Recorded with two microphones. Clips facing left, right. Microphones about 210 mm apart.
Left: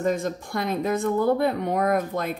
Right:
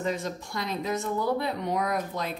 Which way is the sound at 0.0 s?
50° left (ahead or behind).